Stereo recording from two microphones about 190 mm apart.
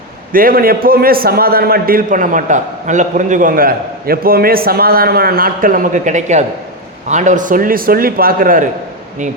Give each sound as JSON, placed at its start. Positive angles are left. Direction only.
{"t": 0.3, "sound": "a man's voice", "side_deg": -50}